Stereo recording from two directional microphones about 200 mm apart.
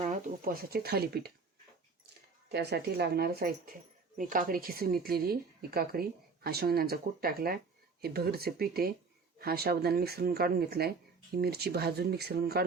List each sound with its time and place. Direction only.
0.4 s speech: 50° right (ahead or behind)
2.5 s speech: 55° right (ahead or behind)